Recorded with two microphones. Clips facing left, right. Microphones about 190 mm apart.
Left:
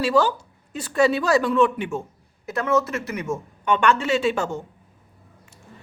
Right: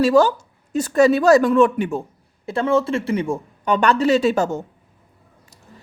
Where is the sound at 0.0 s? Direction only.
45° right (ahead or behind).